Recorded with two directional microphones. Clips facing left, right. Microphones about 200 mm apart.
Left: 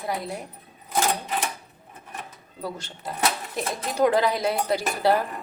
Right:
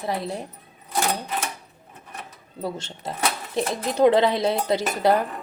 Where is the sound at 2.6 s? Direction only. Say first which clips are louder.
Right 3 dB; 25° right (ahead or behind).